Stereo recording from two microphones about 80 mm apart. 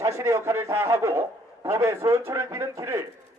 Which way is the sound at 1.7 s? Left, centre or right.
Right.